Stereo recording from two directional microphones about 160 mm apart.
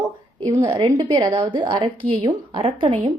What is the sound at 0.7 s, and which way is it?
A woman's voice, 25° right (ahead or behind).